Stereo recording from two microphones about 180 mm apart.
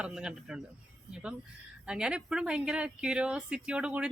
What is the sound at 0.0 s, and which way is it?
Speech, 5° right (ahead or behind).